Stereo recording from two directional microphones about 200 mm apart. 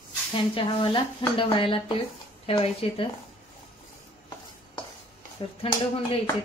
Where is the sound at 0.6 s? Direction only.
25° left (ahead or behind).